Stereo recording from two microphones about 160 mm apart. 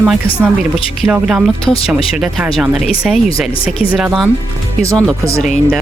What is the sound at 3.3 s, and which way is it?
Speech, 35° left (ahead or behind).